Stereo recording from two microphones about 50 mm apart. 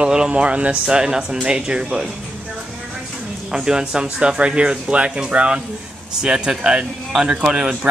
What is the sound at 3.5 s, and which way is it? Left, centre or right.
Speech, centre.